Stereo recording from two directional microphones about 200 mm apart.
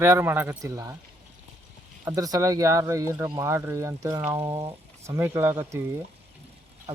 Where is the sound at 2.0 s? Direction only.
15° right (ahead or behind).